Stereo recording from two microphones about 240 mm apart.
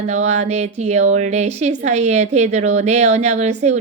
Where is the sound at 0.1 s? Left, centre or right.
Right.